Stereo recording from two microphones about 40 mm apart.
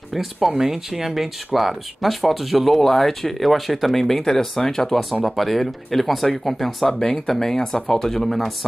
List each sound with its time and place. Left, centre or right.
0.1 s speech: centre